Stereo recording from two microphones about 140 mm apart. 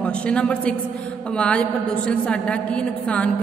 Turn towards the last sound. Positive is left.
turn(degrees=10)  # may be behind; listen again after turning